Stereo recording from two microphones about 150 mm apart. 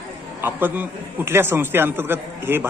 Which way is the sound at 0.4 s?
15° right (ahead or behind).